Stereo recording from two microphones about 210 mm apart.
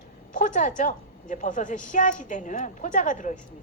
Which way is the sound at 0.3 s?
35° left (ahead or behind).